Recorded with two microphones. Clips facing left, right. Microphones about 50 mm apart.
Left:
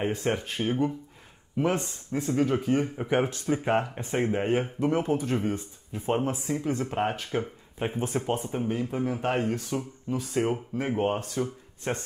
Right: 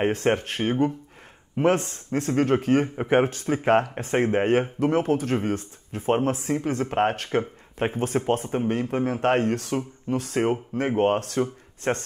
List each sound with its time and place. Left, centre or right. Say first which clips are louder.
0.0 s speech: right 5 dB; right
3.0 s speech: right 5 dB; right
4.5 s speech: right 4 dB; right
11.9 s speech: right 5 dB; right